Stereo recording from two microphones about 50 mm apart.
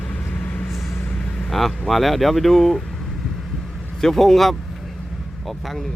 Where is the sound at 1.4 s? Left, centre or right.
Centre.